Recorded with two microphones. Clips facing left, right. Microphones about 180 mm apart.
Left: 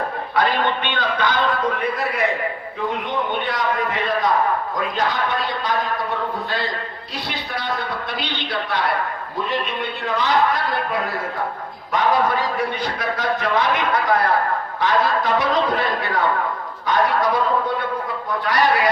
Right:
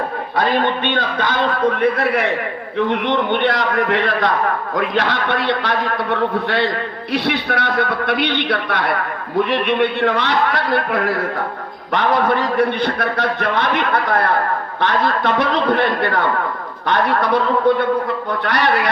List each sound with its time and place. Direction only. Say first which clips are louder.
0.9 s speech: right 2 dB; 50° right (ahead or behind)
1.8 s a man's voice: right 5 dB; 70° right (ahead or behind)